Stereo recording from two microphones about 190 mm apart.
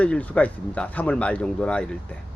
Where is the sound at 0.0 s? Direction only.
5° left (ahead or behind).